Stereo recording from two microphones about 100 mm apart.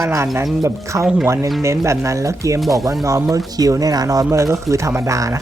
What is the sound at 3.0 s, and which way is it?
Speech, 35° right (ahead or behind).